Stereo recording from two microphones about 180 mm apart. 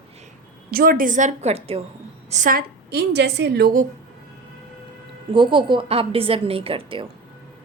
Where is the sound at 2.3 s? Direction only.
45° right (ahead or behind); by 3.7 s 65° right (ahead or behind).